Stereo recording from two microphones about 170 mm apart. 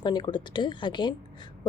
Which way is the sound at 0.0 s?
25° left (ahead or behind).